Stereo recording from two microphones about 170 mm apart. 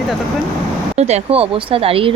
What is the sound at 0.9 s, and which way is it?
Speech, 40° right (ahead or behind).